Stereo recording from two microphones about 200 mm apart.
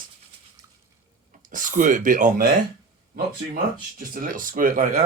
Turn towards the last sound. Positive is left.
turn(degrees=-40)  # may be behind; listen again after turning